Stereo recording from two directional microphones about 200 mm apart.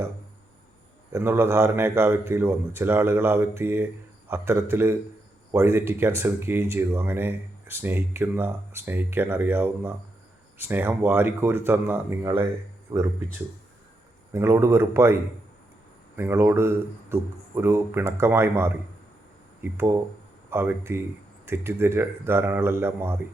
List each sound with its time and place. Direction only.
1.1 s speech: 10° right (ahead or behind)
12.9 s speech: 25° right (ahead or behind)
14.3 s speech: 15° right (ahead or behind)